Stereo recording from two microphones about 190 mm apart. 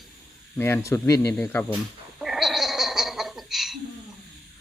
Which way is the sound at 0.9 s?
15° left (ahead or behind).